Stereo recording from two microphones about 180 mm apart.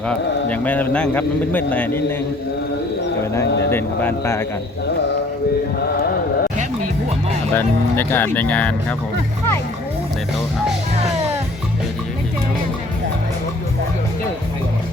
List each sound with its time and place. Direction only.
0.1 s a man's voice: 10° left (ahead or behind)
3.7 s a man's voice: 10° left (ahead or behind)
5.8 s music: 55° left (ahead or behind)
7.5 s a man's voice: 10° left (ahead or behind)